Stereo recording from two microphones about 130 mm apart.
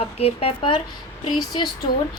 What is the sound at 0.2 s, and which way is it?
A woman's voice, 50° left (ahead or behind).